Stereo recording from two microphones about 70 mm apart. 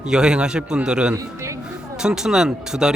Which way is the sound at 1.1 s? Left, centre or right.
Right.